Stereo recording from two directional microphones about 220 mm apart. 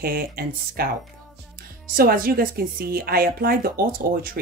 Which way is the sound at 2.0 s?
40° right (ahead or behind).